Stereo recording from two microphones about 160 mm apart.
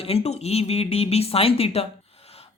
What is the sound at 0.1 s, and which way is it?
Speech, 40° left (ahead or behind).